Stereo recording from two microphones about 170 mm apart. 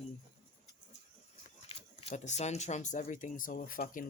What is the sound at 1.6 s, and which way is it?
Speech, 35° left (ahead or behind).